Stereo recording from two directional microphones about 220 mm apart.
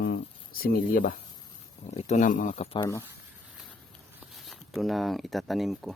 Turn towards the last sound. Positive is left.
turn(degrees=0)  # may be behind; listen again after turning